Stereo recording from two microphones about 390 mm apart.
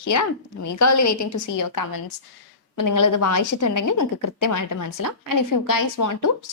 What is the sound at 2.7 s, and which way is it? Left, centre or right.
Speech, left.